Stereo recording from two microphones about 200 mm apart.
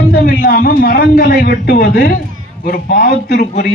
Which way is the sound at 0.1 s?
45° left (ahead or behind).